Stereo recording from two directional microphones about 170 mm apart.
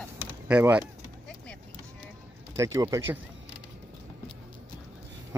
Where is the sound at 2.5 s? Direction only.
20° right (ahead or behind).